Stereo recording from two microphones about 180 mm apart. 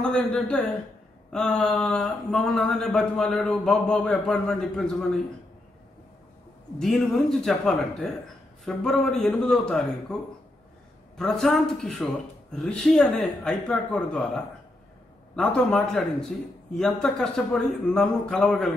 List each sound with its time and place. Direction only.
0.0 s a man's voice: 5° left (ahead or behind)
6.8 s speech: centre (ahead or behind)
11.1 s speech: centre (ahead or behind)